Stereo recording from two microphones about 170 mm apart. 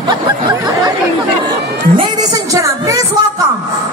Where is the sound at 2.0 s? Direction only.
20° right (ahead or behind).